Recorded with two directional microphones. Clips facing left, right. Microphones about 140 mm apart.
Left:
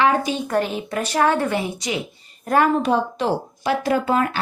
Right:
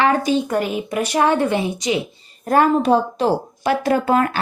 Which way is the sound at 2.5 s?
35° right (ahead or behind).